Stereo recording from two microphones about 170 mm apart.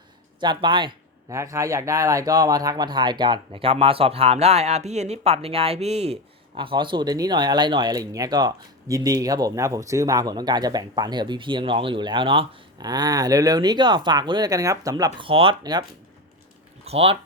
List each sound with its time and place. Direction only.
0.3 s speech: 25° right (ahead or behind)
1.3 s speech: 15° right (ahead or behind)
16.8 s speech: 35° right (ahead or behind)